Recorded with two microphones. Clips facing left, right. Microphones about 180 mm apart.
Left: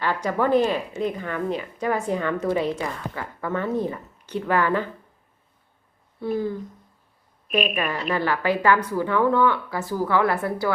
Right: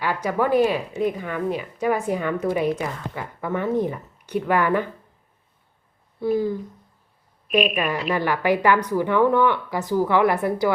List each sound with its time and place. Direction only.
0.0 s speech: 10° right (ahead or behind)
6.2 s speech: 10° right (ahead or behind)
8.1 s speech: 15° right (ahead or behind)